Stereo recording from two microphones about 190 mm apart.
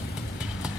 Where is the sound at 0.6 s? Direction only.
5° right (ahead or behind).